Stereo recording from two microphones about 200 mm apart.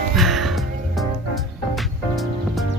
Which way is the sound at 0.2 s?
Centre (ahead or behind).